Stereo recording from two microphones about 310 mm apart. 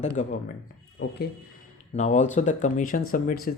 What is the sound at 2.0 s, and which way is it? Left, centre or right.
Speech, left.